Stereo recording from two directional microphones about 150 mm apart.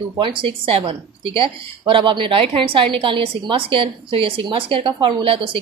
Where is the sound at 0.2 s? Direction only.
35° right (ahead or behind).